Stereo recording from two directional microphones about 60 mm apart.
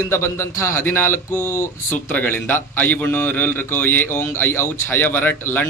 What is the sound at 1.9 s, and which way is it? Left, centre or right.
A man's voice, left.